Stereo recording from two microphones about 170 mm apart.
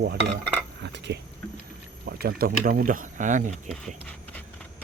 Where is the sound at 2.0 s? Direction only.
65° right (ahead or behind); by 3.5 s 45° right (ahead or behind).